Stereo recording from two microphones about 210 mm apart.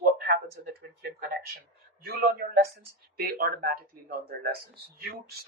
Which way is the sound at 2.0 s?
45° right (ahead or behind).